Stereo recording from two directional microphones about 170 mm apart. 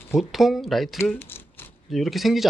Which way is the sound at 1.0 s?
10° left (ahead or behind).